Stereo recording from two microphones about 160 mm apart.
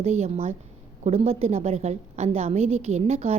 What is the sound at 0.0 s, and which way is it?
A woman's voice, 40° right (ahead or behind).